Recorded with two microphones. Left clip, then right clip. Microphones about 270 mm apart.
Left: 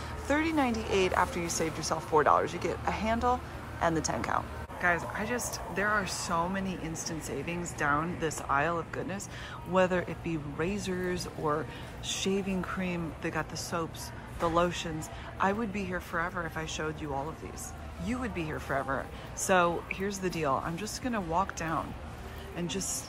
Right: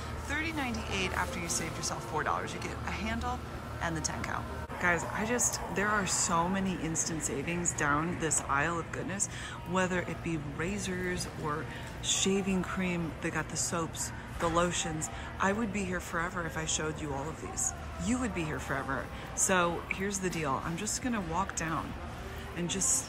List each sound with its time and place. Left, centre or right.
0.3 s speech: centre
12.2 s speech: centre